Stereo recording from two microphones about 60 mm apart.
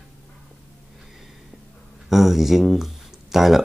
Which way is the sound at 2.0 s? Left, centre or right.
Centre.